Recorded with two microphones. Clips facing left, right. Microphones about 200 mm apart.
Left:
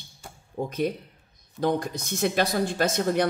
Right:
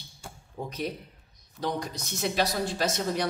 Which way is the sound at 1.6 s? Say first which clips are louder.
Left 6 dB; 50° left (ahead or behind).